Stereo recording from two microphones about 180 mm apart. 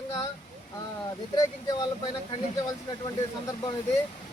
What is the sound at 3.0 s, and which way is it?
Speech, 20° left (ahead or behind).